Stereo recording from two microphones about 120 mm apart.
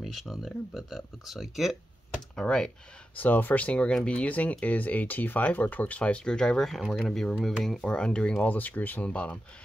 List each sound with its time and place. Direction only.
0.0 s speech: centre (ahead or behind)